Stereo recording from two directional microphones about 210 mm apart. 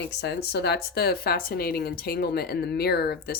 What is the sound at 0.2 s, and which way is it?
Speech, 50° left (ahead or behind).